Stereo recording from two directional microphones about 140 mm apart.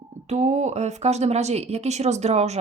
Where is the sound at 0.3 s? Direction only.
50° right (ahead or behind).